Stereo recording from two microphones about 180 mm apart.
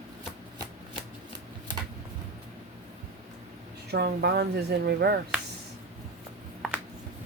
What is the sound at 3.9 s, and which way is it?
A woman's voice, 65° right (ahead or behind).